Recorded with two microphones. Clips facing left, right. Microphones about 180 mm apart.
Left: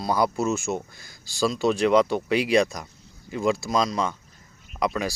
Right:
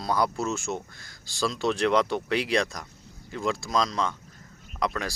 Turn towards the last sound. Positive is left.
turn(degrees=5)  # may be behind; listen again after turning